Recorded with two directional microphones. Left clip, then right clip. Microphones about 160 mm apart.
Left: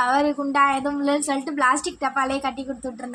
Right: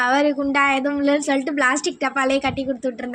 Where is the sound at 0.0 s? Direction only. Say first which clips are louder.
Right 2 dB; 15° right (ahead or behind).